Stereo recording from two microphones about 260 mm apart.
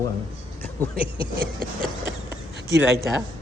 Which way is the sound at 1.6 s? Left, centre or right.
Right.